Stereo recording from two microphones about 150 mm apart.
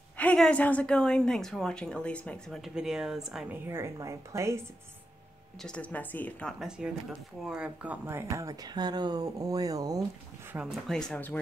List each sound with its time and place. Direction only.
0.2 s a woman's voice: 10° left (ahead or behind)
3.6 s speech: 15° right (ahead or behind)
5.6 s a woman's voice: 5° left (ahead or behind)
6.8 s a woman's voice: 5° right (ahead or behind); by 10.0 s 25° right (ahead or behind)
10.5 s a woman's voice: 5° right (ahead or behind)